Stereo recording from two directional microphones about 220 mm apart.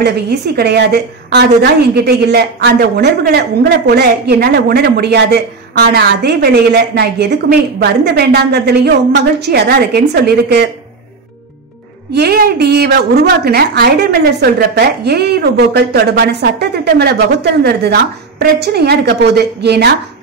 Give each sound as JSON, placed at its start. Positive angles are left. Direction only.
{"t": 0.0, "sound": "a woman's voice", "side_deg": -45}
{"t": 12.1, "sound": "a woman's voice", "side_deg": -45}